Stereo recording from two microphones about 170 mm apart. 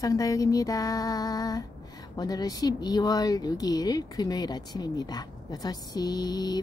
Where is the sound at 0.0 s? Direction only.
20° left (ahead or behind).